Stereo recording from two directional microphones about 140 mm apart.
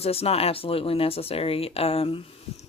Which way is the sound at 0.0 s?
45° left (ahead or behind).